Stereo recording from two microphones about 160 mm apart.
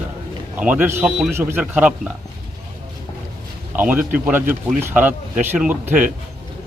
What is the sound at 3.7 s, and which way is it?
A man's voice, 10° right (ahead or behind).